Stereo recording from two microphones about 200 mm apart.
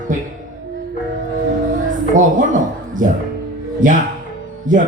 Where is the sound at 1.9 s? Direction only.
40° right (ahead or behind).